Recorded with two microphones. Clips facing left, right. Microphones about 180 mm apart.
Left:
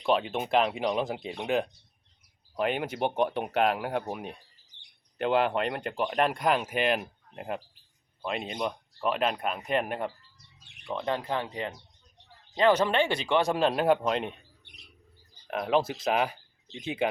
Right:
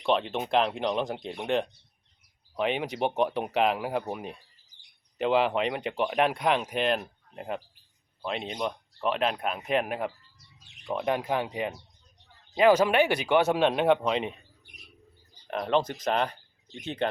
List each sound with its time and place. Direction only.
0.0 s speech: 5° left (ahead or behind)
4.7 s bird: 65° left (ahead or behind)
5.1 s speech: centre (ahead or behind)
10.8 s speech: 15° right (ahead or behind)
15.4 s speech: 5° left (ahead or behind)